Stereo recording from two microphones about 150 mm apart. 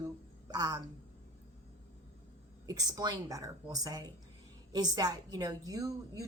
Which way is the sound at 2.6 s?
25° right (ahead or behind).